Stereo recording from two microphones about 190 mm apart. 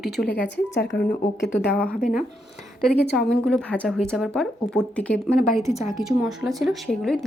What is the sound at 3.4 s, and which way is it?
Speech, 5° left (ahead or behind).